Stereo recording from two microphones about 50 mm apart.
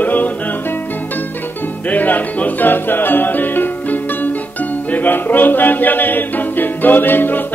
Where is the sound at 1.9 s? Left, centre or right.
Left.